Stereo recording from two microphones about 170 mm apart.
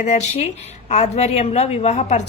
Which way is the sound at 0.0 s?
40° left (ahead or behind).